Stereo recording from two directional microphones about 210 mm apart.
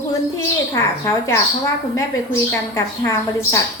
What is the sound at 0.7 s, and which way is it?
A woman's voice, 15° left (ahead or behind).